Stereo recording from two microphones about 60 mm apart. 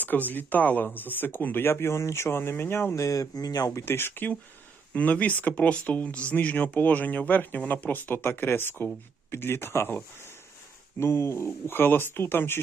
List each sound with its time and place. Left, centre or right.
0.0 s speech: left
2.9 s speech: left
3.8 s speech: left
11.0 s speech: left